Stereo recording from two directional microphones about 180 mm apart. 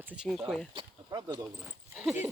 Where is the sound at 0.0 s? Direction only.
10° right (ahead or behind).